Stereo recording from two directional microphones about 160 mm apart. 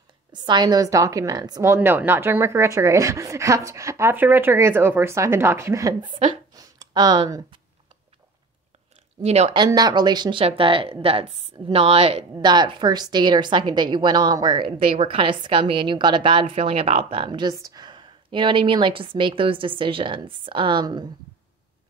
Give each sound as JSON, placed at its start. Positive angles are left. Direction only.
{"t": 0.3, "sound": "a woman's voice", "side_deg": -25}
{"t": 6.6, "sound": "a sound", "side_deg": -25}
{"t": 9.2, "sound": "speech", "side_deg": -40}
{"t": 9.6, "sound": "a woman's voice", "side_deg": -25}